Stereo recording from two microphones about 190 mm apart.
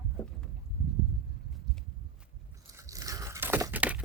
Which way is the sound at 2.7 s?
15° right (ahead or behind).